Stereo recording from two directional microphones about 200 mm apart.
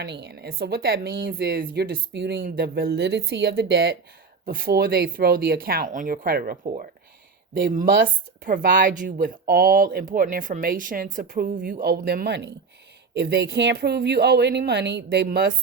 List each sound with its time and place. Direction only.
0.0 s speech: 55° right (ahead or behind)